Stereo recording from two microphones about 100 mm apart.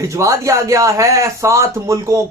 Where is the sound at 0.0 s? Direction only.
35° right (ahead or behind).